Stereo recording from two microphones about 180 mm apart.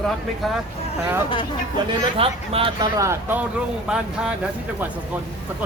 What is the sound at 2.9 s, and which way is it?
Speech, 15° right (ahead or behind).